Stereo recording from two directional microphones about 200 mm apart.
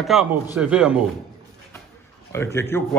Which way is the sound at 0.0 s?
Centre (ahead or behind).